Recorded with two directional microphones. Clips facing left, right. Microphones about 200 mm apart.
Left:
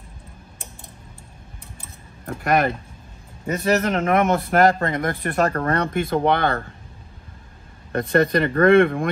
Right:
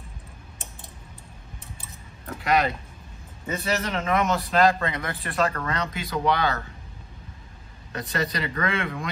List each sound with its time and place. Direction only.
2.2 s a man's voice: 50° left (ahead or behind)
7.9 s speech: 55° left (ahead or behind)